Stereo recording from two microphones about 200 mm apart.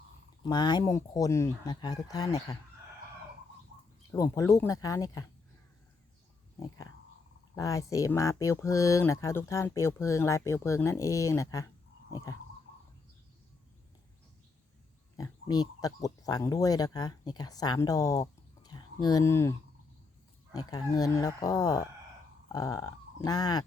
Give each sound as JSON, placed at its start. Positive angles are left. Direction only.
{"t": 0.4, "sound": "speech", "side_deg": 20}
{"t": 4.1, "sound": "speech", "side_deg": 15}
{"t": 7.5, "sound": "speech", "side_deg": 15}
{"t": 15.1, "sound": "speech", "side_deg": 20}